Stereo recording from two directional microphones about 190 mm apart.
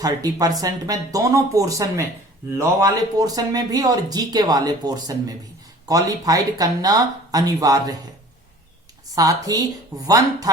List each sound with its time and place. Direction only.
0.0 s speech: 20° right (ahead or behind)
9.1 s speech: 20° right (ahead or behind)